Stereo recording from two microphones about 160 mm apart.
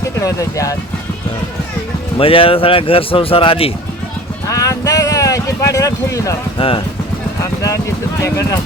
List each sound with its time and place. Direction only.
0.2 s speech: 20° left (ahead or behind)
2.1 s speech: 35° left (ahead or behind)
4.4 s speech: 20° left (ahead or behind)
6.6 s speech: 35° left (ahead or behind)
8.2 s speech: 20° left (ahead or behind)